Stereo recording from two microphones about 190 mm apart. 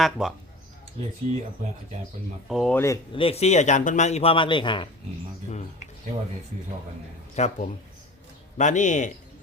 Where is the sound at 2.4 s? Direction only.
Centre (ahead or behind).